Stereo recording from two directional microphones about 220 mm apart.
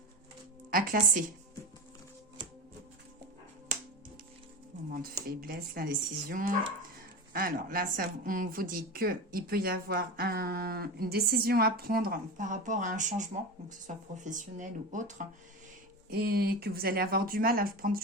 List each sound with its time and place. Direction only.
0.7 s speech: 40° right (ahead or behind)
5.4 s a woman's voice: 40° right (ahead or behind)
16.1 s speech: 45° right (ahead or behind)